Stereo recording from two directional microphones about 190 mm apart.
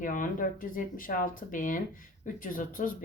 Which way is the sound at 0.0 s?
45° left (ahead or behind).